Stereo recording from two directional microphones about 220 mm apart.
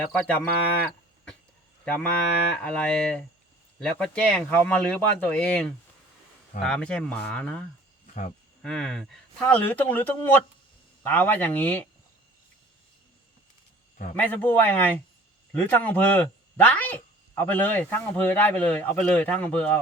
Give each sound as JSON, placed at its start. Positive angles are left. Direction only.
{"t": 0.2, "sound": "speech", "side_deg": 5}
{"t": 1.8, "sound": "speech", "side_deg": 5}
{"t": 8.0, "sound": "cricket", "side_deg": 35}
{"t": 8.6, "sound": "speech", "side_deg": 5}
{"t": 14.2, "sound": "speech", "side_deg": 5}